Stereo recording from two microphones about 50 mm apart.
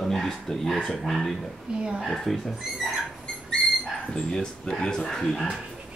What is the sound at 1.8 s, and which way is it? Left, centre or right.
Speech, centre.